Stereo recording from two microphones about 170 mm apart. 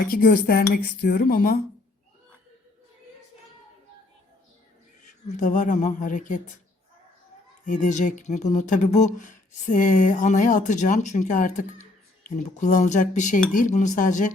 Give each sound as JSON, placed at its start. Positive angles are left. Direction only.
{"t": 0.0, "sound": "speech", "side_deg": 60}
{"t": 5.0, "sound": "speech", "side_deg": 45}
{"t": 7.6, "sound": "speech", "side_deg": 45}